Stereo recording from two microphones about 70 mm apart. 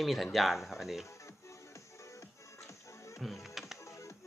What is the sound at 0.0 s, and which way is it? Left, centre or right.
Speech, centre.